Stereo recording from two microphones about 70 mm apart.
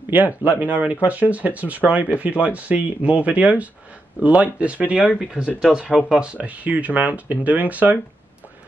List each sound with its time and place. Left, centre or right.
0.4 s speech: right